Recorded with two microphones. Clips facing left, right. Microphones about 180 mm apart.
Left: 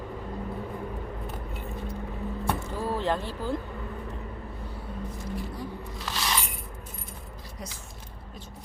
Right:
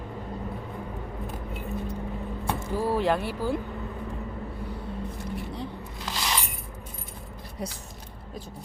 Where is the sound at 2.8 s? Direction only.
10° right (ahead or behind).